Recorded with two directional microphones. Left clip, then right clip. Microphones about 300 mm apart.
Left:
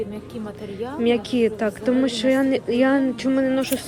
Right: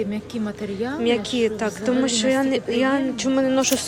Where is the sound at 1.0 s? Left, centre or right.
Centre.